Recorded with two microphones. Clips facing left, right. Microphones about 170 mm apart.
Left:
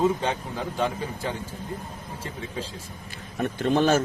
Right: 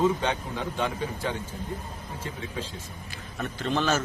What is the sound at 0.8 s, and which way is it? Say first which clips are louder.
Speech: left 2 dB; 35° left (ahead or behind).